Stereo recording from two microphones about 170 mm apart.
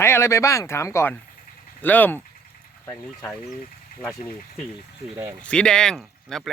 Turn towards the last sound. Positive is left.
turn(degrees=0)  # may be behind; listen again after turning